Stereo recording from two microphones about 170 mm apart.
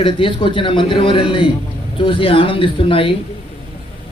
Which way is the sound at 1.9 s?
30° left (ahead or behind).